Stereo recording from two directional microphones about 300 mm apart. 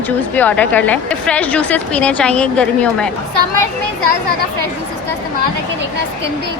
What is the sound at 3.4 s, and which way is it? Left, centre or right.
Speech, right.